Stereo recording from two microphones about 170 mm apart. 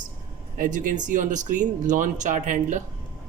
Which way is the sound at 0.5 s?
50° right (ahead or behind).